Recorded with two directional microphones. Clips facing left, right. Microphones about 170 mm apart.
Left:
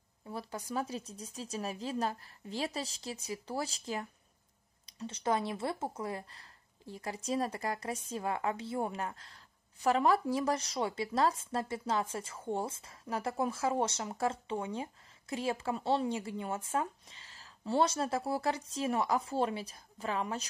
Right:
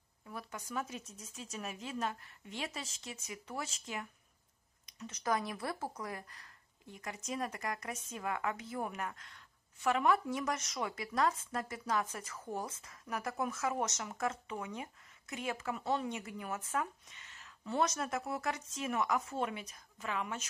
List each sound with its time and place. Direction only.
0.2 s speech: 30° left (ahead or behind)